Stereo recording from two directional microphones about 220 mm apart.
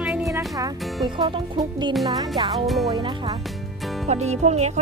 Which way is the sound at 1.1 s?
20° right (ahead or behind).